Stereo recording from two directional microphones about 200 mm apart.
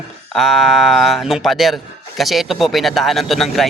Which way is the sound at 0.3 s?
Centre (ahead or behind).